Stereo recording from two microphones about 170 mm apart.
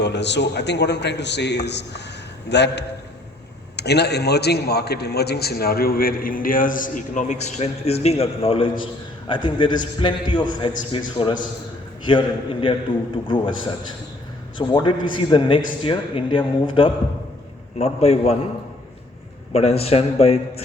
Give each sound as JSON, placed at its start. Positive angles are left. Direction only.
{"t": 0.0, "sound": "a man's voice", "side_deg": 90}
{"t": 3.8, "sound": "a man's voice", "side_deg": 80}
{"t": 19.5, "sound": "a man's voice", "side_deg": 35}